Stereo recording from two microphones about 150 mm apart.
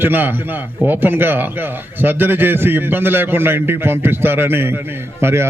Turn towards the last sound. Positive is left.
turn(degrees=-15)  # may be behind; listen again after turning